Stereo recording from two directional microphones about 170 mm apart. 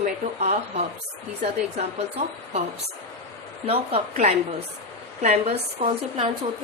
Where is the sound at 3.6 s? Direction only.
35° right (ahead or behind).